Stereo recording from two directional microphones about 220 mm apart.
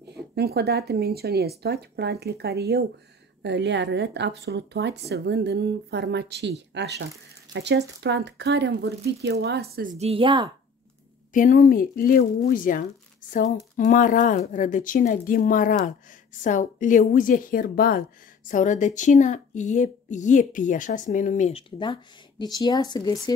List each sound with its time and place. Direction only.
0.1 s speech: 45° right (ahead or behind)
9.9 s speech: 25° right (ahead or behind)
11.3 s a woman's voice: 35° left (ahead or behind); by 23.1 s 20° left (ahead or behind)